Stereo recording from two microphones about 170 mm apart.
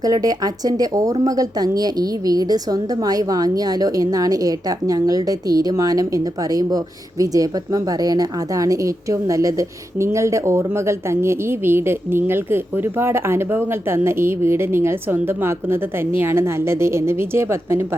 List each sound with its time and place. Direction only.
0.0 s a woman's voice: 20° right (ahead or behind)